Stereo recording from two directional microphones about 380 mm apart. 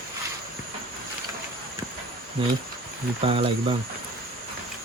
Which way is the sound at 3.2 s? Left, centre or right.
Centre.